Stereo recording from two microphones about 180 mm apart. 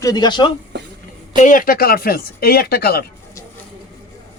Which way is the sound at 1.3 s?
45° left (ahead or behind).